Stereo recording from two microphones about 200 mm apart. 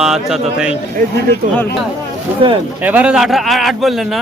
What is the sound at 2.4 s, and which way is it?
Speech, 25° right (ahead or behind).